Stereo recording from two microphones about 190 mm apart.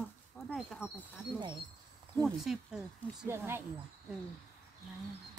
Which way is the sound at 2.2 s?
Centre (ahead or behind).